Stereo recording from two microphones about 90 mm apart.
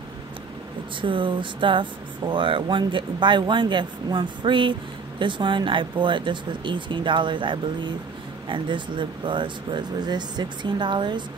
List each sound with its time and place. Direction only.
1.0 s speech: 65° right (ahead or behind)